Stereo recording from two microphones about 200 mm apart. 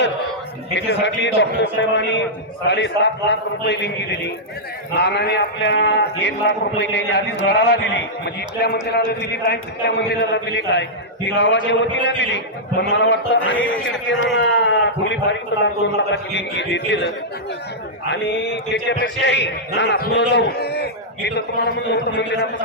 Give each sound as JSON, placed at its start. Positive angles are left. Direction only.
{"t": 0.7, "sound": "a man's voice", "side_deg": 60}
{"t": 18.1, "sound": "a man's voice", "side_deg": 60}